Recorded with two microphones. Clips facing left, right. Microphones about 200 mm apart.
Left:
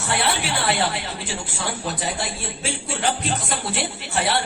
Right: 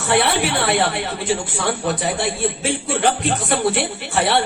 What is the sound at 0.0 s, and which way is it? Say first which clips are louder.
A woman's voice: right 6 dB; 60° right (ahead or behind).